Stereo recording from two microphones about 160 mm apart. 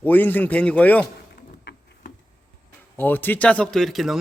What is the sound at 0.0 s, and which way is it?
A man's voice, 10° left (ahead or behind).